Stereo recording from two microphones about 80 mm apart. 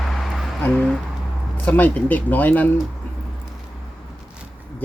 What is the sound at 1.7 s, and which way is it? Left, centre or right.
Speech, left.